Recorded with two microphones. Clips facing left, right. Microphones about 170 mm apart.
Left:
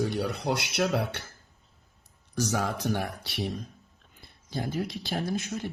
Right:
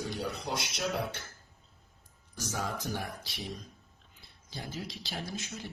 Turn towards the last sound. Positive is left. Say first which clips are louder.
# left 9 dB
turn(degrees=55)  # may be behind; listen again after turning